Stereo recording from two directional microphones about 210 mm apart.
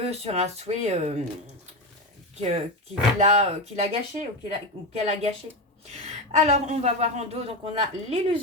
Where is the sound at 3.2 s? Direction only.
30° right (ahead or behind).